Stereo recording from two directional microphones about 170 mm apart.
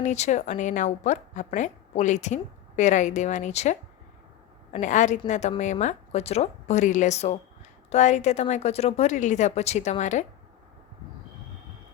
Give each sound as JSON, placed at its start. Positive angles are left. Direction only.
{"t": 0.0, "sound": "a woman's voice", "side_deg": 45}